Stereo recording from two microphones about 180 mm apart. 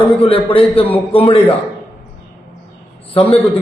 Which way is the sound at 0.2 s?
30° left (ahead or behind).